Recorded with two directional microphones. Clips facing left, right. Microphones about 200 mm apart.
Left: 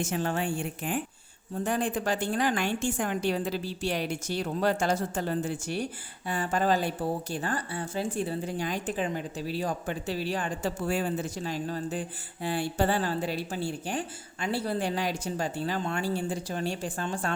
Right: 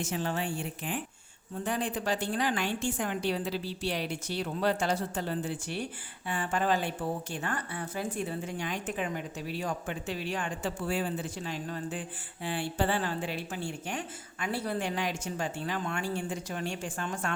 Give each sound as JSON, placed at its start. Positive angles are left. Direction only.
{"t": 0.0, "sound": "a woman's voice", "side_deg": 50}